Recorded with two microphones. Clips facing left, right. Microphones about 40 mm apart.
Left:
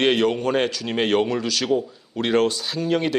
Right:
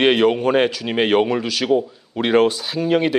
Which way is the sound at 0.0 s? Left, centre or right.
Centre.